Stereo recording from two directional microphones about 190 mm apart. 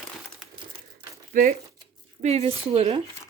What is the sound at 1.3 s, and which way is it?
Speech, 45° right (ahead or behind).